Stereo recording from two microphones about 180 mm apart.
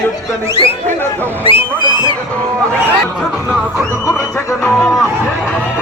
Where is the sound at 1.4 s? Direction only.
30° left (ahead or behind).